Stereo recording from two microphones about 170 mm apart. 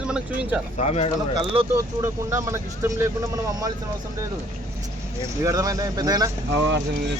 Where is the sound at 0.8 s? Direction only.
40° left (ahead or behind).